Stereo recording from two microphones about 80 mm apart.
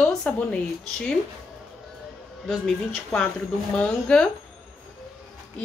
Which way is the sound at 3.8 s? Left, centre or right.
Centre.